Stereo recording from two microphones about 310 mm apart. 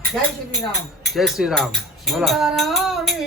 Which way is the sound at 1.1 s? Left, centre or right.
Centre.